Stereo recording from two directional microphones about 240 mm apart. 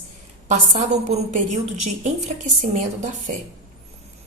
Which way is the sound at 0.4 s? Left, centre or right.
Right.